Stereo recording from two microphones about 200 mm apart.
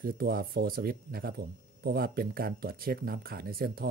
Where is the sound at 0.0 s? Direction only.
50° right (ahead or behind).